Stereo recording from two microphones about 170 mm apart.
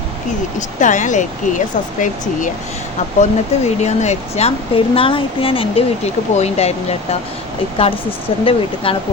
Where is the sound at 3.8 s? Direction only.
40° left (ahead or behind).